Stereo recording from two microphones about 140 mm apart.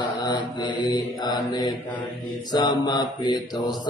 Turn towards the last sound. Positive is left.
turn(degrees=30)  # may be behind; listen again after turning